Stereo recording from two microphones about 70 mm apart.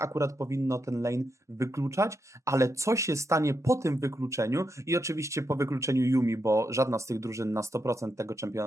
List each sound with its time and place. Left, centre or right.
0.0 s speech: right